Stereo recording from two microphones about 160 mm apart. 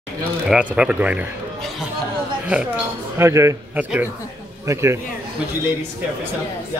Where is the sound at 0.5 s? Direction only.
5° right (ahead or behind).